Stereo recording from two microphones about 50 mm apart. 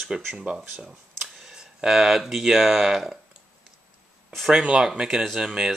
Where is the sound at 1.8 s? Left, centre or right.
Centre.